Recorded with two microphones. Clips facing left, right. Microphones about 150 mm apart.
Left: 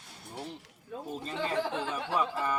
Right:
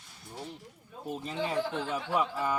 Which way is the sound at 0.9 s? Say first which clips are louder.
Left 7 dB; 90° left.